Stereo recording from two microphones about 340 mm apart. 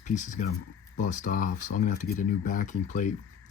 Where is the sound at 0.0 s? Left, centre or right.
Left.